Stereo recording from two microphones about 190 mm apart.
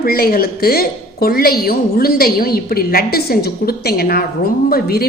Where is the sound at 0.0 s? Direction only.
50° left (ahead or behind).